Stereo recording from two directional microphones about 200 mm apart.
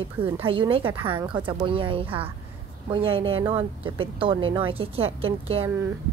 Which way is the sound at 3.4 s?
10° right (ahead or behind).